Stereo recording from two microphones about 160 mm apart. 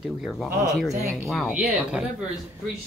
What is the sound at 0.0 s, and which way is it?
A woman's voice, centre (ahead or behind).